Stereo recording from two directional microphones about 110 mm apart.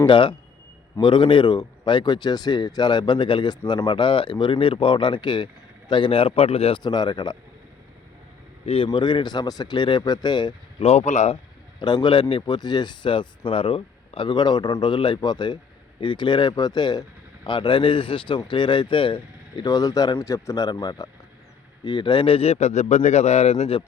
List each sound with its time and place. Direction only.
0.0 s speech: 50° left (ahead or behind); by 6.7 s 65° left (ahead or behind)
6.7 s speech: 40° left (ahead or behind)
8.6 s speech: 55° left (ahead or behind)
10.8 s speech: 80° left
11.8 s a man's voice: 45° left (ahead or behind); by 23.8 s 70° left (ahead or behind)